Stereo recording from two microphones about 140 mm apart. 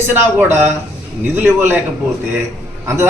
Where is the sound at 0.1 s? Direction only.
15° right (ahead or behind).